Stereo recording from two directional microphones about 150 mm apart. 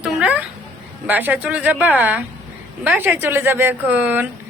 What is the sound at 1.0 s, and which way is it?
A woman's voice, 10° right (ahead or behind).